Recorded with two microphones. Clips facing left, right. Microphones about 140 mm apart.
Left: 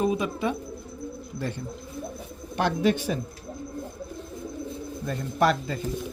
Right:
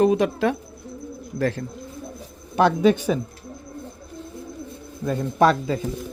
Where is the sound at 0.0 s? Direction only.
85° right.